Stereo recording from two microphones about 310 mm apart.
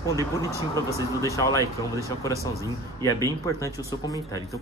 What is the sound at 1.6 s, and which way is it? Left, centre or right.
Speech, centre.